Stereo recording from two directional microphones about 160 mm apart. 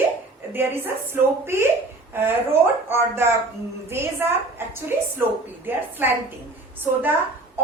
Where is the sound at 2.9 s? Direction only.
15° right (ahead or behind).